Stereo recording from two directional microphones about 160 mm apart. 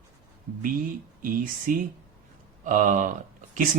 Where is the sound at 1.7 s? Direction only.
60° right (ahead or behind).